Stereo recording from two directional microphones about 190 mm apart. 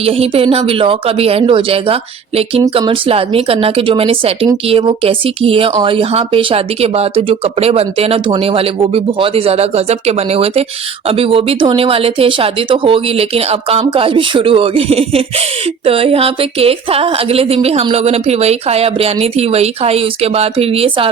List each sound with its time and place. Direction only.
0.0 s speech: 30° right (ahead or behind)